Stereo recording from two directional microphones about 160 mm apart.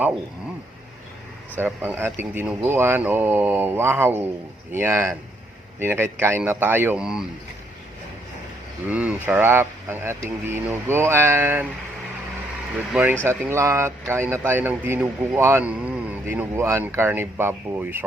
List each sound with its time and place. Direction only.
1.5 s speech: 10° right (ahead or behind)
8.9 s speech: 10° right (ahead or behind)
12.9 s speech: 10° right (ahead or behind)